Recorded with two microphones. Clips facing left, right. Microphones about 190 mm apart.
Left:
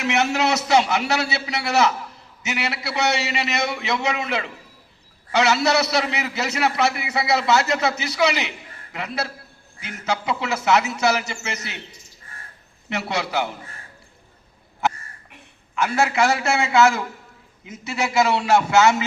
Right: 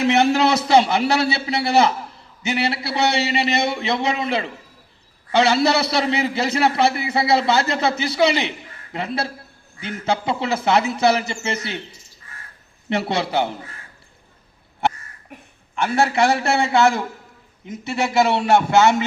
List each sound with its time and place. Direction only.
0.0 s a man's voice: 30° right (ahead or behind)
12.9 s a man's voice: 30° right (ahead or behind)
15.8 s a man's voice: 35° right (ahead or behind)
16.4 s speech: 60° right (ahead or behind)
17.8 s speech: 55° right (ahead or behind)